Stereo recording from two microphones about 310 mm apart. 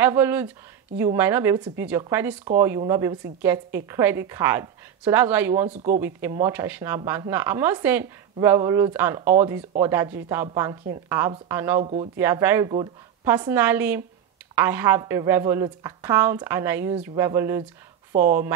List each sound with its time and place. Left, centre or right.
0.0 s a woman's voice: centre
5.7 s speech: right
5.9 s a woman's voice: centre
11.8 s a woman's voice: centre
12.2 s a woman's voice: centre
18.1 s speech: right